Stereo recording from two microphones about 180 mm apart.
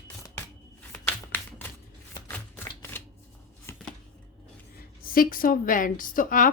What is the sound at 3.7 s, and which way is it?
Chopping, 15° left (ahead or behind).